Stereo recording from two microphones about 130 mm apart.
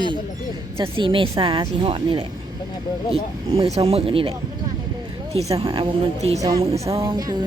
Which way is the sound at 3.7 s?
50° right (ahead or behind).